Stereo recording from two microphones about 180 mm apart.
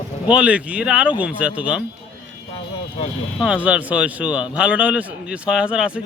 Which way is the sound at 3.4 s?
5° right (ahead or behind).